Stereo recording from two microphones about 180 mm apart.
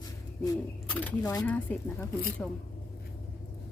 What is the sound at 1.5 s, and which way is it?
A woman's voice, 10° left (ahead or behind).